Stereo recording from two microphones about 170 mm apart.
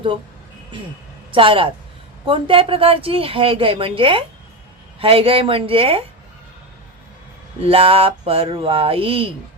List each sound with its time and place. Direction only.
1.3 s speech: 30° right (ahead or behind)
7.6 s speech: 35° right (ahead or behind)